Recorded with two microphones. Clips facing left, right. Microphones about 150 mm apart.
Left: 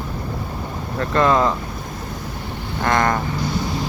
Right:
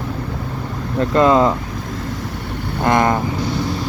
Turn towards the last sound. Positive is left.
turn(degrees=-20)  # may be behind; listen again after turning